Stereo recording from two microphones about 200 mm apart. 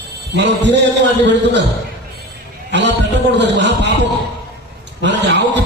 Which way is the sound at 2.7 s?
60° right (ahead or behind).